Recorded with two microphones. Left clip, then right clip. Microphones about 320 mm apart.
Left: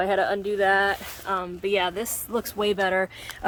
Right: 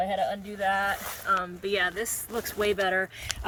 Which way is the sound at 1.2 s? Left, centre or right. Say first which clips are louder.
Even; centre.